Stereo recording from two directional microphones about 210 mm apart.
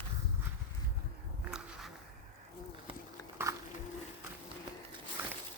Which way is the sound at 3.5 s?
15° right (ahead or behind).